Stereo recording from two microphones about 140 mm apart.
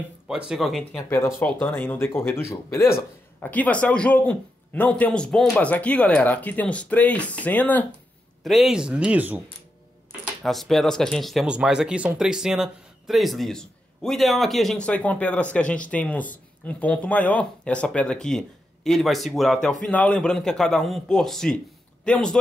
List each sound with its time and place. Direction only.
0.3 s speech: 5° right (ahead or behind)
1.1 s speech: 15° left (ahead or behind)
8.5 s speech: centre (ahead or behind)
10.2 s speech: centre (ahead or behind)